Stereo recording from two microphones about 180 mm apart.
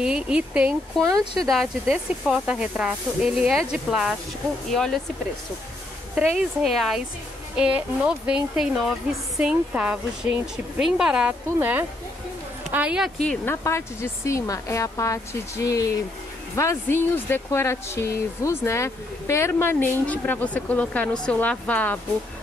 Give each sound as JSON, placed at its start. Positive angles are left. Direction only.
{"t": 0.0, "sound": "speech", "side_deg": -5}
{"t": 6.1, "sound": "speech", "side_deg": -5}
{"t": 13.7, "sound": "speech", "side_deg": 15}